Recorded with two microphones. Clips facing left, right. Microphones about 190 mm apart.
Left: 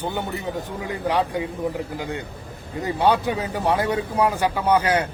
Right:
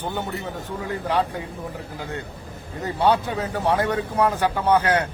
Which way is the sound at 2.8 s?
10° left (ahead or behind).